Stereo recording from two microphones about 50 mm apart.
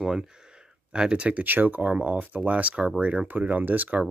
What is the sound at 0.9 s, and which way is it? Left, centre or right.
Speech, centre.